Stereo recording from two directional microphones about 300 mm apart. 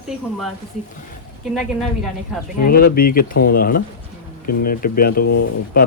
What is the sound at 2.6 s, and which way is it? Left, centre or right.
Speech, left.